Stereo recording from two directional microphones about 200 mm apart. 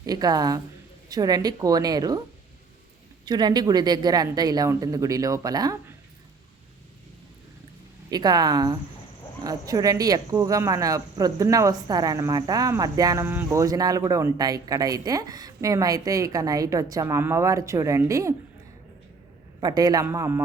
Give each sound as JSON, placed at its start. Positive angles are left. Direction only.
{"t": 0.0, "sound": "speech", "side_deg": -20}
{"t": 3.2, "sound": "speech", "side_deg": -20}
{"t": 8.1, "sound": "speech", "side_deg": -20}
{"t": 19.5, "sound": "speech", "side_deg": -20}